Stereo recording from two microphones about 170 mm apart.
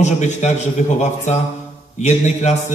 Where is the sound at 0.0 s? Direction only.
45° left (ahead or behind).